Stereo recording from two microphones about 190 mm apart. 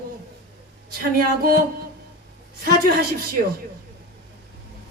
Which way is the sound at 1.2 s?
50° right (ahead or behind).